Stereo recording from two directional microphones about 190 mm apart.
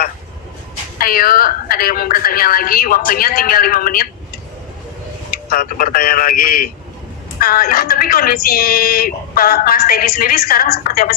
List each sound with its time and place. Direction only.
0.9 s speech: 50° left (ahead or behind)
5.3 s speech: 50° left (ahead or behind)